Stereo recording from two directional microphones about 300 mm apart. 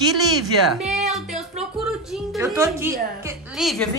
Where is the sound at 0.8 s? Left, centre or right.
Centre.